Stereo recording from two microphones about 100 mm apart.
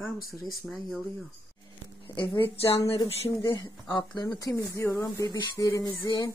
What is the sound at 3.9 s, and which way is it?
Speech, 45° left (ahead or behind).